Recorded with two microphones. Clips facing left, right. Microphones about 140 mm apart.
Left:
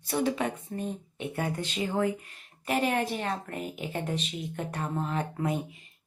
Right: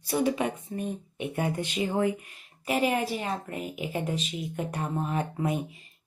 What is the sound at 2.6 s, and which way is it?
Speech, 5° right (ahead or behind).